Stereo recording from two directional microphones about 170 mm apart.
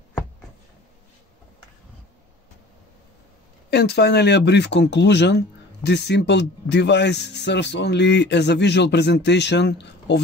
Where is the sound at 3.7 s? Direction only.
75° left (ahead or behind).